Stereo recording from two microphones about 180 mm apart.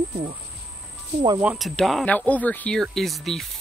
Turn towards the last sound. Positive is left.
turn(degrees=0)  # may be behind; listen again after turning